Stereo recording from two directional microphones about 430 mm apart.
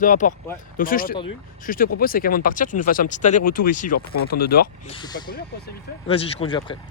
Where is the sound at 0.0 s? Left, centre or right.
Centre.